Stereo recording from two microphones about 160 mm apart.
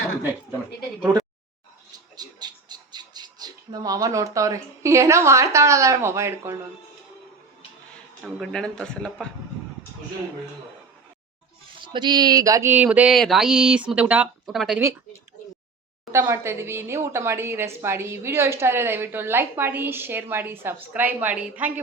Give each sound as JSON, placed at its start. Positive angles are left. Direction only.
{"t": 2.1, "sound": "speech", "side_deg": -25}
{"t": 8.4, "sound": "a man's voice", "side_deg": 5}
{"t": 11.7, "sound": "a man's voice", "side_deg": -30}
{"t": 16.1, "sound": "speech", "side_deg": -15}